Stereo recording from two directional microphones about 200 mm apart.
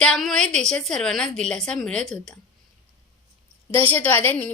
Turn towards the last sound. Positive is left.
turn(degrees=10)  # may be behind; listen again after turning